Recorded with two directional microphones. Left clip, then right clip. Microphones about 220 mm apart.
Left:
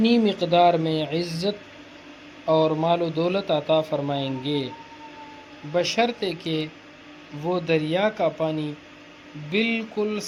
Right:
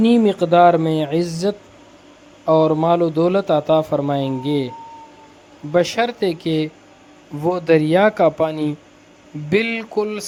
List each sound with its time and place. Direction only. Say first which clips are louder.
0.0 s a man's voice: right 6 dB; 15° right (ahead or behind)
5.7 s a man's voice: right 5 dB; 25° right (ahead or behind)
9.5 s speech: right 5 dB; 75° right (ahead or behind)
9.9 s speech: right 5 dB; 30° right (ahead or behind)